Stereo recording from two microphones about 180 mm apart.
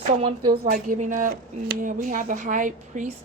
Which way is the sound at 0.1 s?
35° right (ahead or behind).